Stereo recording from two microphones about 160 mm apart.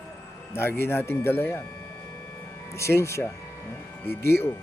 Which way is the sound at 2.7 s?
15° left (ahead or behind).